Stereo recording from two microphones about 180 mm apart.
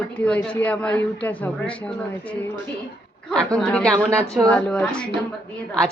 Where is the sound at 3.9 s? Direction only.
15° right (ahead or behind).